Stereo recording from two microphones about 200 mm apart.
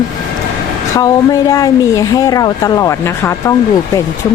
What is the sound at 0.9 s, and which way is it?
Speech, 15° left (ahead or behind).